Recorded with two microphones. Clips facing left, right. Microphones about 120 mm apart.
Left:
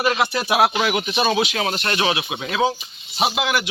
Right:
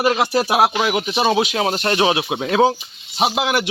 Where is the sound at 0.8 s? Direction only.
20° right (ahead or behind).